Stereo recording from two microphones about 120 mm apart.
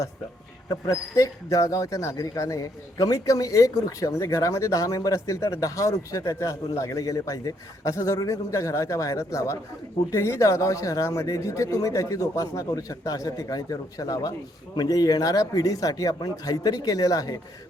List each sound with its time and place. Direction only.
0.7 s speech: 25° left (ahead or behind)